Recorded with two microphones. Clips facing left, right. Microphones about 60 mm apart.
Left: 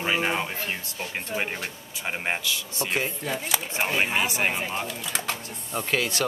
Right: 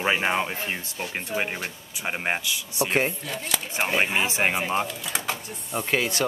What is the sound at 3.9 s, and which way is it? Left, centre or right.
Speech, centre.